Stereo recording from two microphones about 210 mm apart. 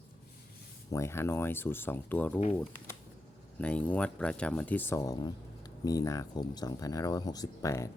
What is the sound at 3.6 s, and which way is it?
Speech, 5° left (ahead or behind).